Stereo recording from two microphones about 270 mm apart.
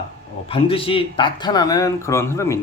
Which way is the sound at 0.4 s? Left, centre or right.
Centre.